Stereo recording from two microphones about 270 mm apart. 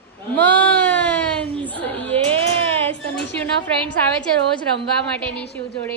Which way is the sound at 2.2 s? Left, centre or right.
Right.